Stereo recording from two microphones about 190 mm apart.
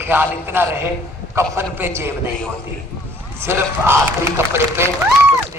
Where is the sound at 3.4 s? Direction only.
10° right (ahead or behind).